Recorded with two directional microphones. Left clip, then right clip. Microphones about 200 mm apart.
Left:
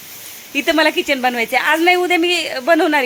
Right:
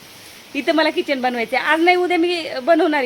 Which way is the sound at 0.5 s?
10° left (ahead or behind).